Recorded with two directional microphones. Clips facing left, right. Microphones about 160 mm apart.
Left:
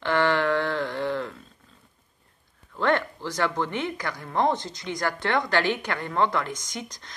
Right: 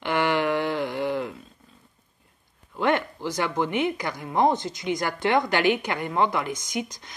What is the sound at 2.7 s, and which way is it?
Speech, 15° right (ahead or behind).